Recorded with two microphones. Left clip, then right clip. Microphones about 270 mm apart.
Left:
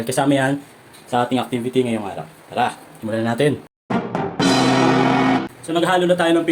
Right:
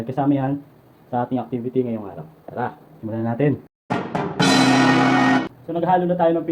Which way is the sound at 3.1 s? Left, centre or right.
Centre.